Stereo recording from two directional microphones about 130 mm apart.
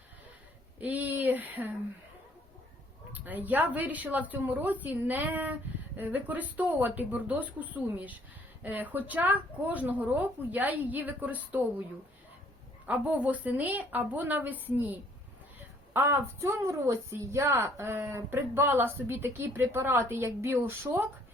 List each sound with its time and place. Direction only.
0.8 s a sound: 15° right (ahead or behind)
3.1 s speech: 15° right (ahead or behind)
12.8 s a woman's voice: 10° right (ahead or behind)